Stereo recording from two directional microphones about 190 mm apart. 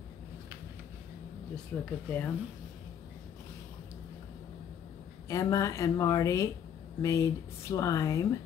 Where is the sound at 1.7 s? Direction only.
10° left (ahead or behind).